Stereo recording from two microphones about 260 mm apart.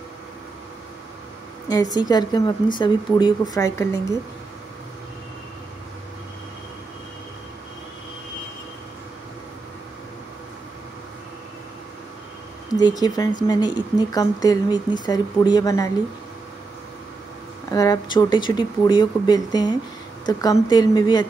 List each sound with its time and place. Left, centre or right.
1.7 s speech: centre
12.7 s speech: centre
17.6 s speech: centre